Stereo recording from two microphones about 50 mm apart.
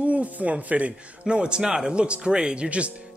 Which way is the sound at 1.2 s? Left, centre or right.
Centre.